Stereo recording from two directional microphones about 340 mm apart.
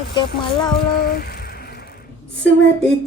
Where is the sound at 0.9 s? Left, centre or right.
Left.